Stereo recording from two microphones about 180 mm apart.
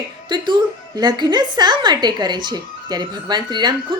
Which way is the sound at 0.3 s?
25° right (ahead or behind).